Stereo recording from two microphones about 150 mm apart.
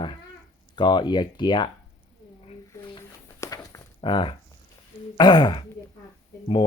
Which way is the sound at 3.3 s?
20° left (ahead or behind).